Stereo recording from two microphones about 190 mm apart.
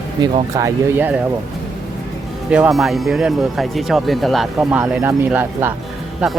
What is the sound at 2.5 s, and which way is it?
Speech, 5° right (ahead or behind).